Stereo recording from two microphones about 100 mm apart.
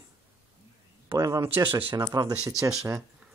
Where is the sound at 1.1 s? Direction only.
35° right (ahead or behind).